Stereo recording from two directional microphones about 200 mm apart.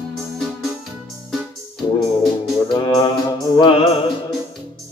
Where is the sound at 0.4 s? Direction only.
Centre (ahead or behind).